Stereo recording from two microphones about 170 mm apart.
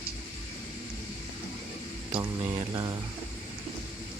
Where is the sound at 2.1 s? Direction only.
25° right (ahead or behind).